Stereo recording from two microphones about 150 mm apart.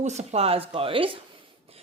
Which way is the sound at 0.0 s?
50° right (ahead or behind).